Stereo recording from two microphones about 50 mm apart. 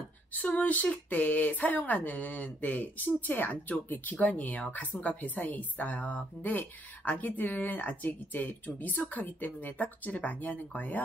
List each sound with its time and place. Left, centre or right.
0.3 s speech: left